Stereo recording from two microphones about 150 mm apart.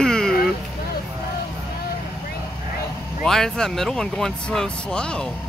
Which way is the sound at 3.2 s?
5° left (ahead or behind).